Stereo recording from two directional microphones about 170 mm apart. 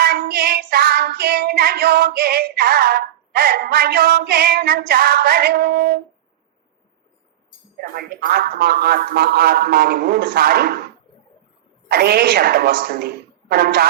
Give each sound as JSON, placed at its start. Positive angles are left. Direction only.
{"t": 0.0, "sound": "child singing", "side_deg": -65}
{"t": 7.8, "sound": "a man's voice", "side_deg": -60}
{"t": 11.9, "sound": "a woman's voice", "side_deg": -65}